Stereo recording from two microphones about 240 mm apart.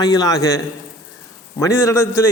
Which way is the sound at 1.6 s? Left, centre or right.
Centre.